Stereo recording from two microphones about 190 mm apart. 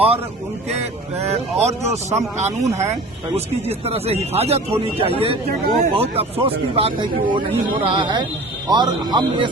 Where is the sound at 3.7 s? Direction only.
30° right (ahead or behind).